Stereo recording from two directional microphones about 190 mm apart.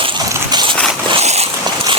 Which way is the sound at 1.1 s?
35° right (ahead or behind).